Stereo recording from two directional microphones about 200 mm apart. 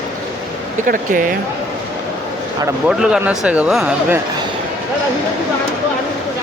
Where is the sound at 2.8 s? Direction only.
5° right (ahead or behind).